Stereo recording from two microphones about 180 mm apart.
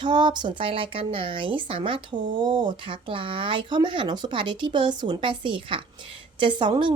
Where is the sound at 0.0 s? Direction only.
25° right (ahead or behind).